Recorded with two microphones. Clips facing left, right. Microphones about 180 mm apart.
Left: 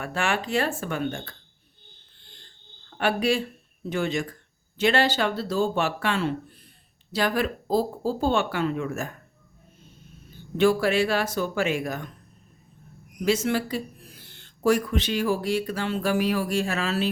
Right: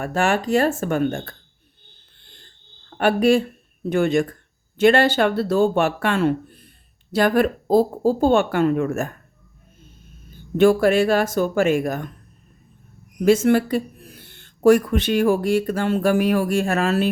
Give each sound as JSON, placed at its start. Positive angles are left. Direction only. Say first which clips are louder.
{"t": 0.0, "sound": "speech", "louder": "right 7 dB", "side_deg": -45}
{"t": 3.0, "sound": "speech", "louder": "right 7 dB", "side_deg": -50}
{"t": 10.6, "sound": "speech", "louder": "right 6 dB", "side_deg": -50}
{"t": 13.2, "sound": "speech", "louder": "right 8 dB", "side_deg": -50}